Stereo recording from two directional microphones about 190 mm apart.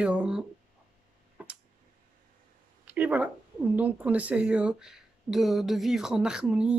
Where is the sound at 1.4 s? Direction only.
5° right (ahead or behind).